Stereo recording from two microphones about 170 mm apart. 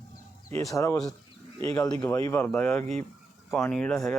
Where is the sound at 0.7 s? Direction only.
20° left (ahead or behind).